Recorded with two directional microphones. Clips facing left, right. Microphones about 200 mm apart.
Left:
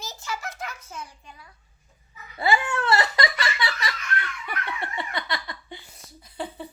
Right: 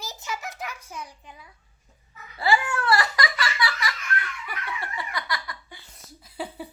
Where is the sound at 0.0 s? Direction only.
15° right (ahead or behind).